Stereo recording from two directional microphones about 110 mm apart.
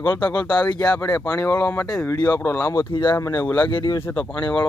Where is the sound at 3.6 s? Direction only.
45° left (ahead or behind).